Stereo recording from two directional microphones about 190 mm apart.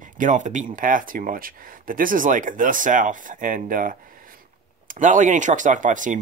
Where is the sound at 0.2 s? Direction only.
40° right (ahead or behind).